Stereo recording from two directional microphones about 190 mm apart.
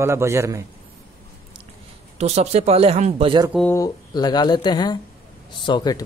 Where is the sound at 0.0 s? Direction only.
15° right (ahead or behind).